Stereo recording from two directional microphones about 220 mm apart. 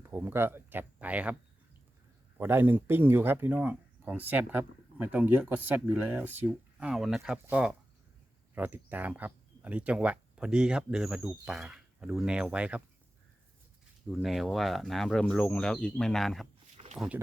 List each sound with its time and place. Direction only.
0.0 s speech: 10° right (ahead or behind)
2.4 s speech: 10° right (ahead or behind)
14.1 s speech: centre (ahead or behind)
16.7 s a sound: 25° right (ahead or behind)